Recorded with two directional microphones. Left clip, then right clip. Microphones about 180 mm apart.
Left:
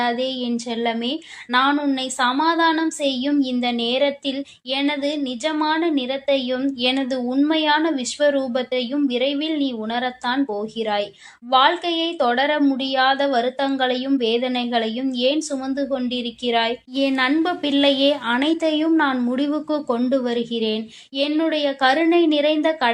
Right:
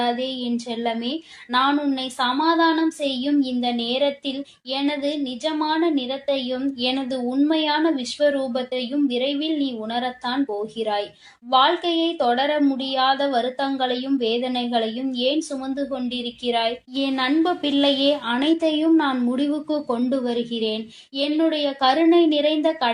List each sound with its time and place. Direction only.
0.0 s speech: 25° left (ahead or behind)